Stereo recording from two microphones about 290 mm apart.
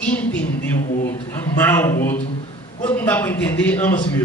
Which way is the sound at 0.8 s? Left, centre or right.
Left.